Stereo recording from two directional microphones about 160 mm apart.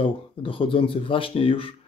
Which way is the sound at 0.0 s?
35° left (ahead or behind).